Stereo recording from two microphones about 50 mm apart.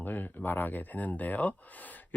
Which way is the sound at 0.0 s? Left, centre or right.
Left.